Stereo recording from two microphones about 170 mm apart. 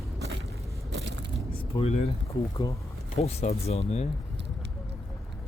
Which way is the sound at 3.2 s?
40° left (ahead or behind).